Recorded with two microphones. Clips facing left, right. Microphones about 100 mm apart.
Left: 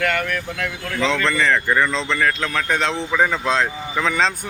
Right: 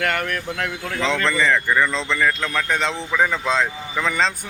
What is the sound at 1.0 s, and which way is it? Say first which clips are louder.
Speech: left 1 dB; centre (ahead or behind).